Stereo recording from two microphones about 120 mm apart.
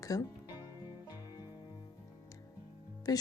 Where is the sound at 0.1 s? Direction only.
30° left (ahead or behind).